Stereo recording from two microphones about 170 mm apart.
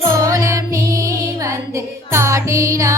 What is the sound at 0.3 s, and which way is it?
Music, 20° right (ahead or behind).